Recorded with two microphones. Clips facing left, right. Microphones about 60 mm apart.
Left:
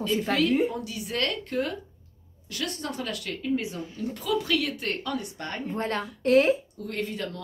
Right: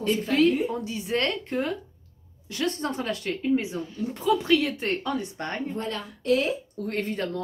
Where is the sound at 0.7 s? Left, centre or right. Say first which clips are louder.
Right 4 dB; right.